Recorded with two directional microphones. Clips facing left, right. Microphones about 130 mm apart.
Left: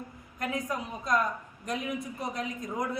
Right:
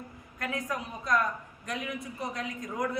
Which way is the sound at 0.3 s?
20° left (ahead or behind).